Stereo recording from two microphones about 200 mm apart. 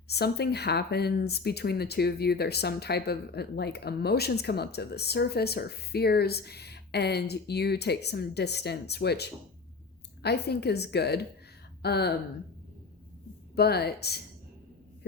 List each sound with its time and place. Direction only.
0.1 s a woman's voice: 55° left (ahead or behind)
13.6 s speech: 55° left (ahead or behind)